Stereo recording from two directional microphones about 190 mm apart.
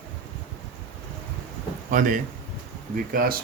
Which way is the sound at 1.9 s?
45° right (ahead or behind).